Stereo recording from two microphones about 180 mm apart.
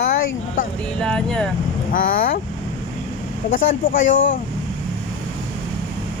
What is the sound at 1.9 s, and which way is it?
Speech, 50° left (ahead or behind).